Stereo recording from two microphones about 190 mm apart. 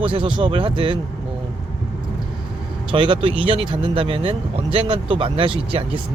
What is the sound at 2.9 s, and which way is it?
A man's voice, 25° right (ahead or behind).